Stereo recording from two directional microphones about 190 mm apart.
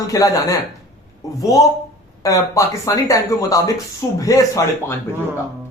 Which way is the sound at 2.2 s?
15° left (ahead or behind).